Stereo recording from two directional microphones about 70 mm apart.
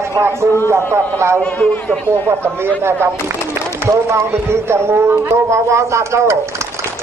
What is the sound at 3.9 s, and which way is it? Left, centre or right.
Speech, right.